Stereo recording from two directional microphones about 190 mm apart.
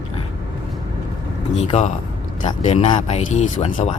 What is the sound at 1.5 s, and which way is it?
Speech, 35° left (ahead or behind).